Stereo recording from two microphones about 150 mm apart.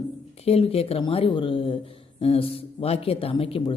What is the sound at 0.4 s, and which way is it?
Speech, 40° left (ahead or behind).